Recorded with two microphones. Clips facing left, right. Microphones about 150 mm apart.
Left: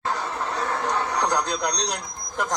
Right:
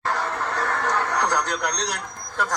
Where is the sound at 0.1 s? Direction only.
60° right (ahead or behind).